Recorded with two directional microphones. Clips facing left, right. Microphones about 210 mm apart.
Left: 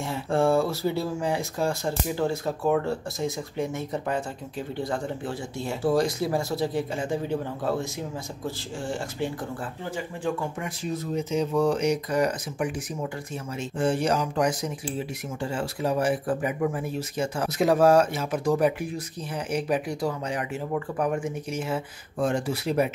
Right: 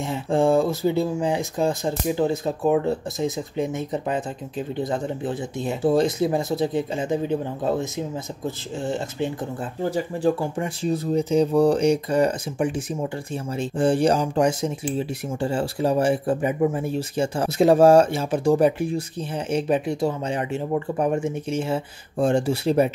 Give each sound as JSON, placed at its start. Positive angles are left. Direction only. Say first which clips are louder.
{"t": 0.0, "sound": "speech", "louder": "right 3 dB", "side_deg": -20}
{"t": 9.8, "sound": "speech", "louder": "right 8 dB", "side_deg": -35}